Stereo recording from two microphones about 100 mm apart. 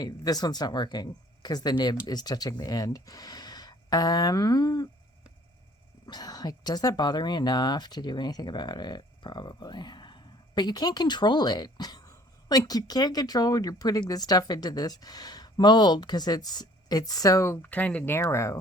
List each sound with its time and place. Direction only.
0.0 s speech: 40° left (ahead or behind)
6.1 s a woman's voice: 40° left (ahead or behind)
17.6 s speech: 15° left (ahead or behind)
18.2 s speech: 30° left (ahead or behind)